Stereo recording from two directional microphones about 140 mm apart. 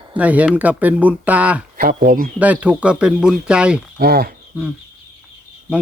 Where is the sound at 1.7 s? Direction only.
85° right.